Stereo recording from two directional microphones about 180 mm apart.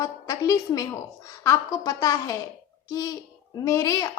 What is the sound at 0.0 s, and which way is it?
A child's voice, 20° left (ahead or behind).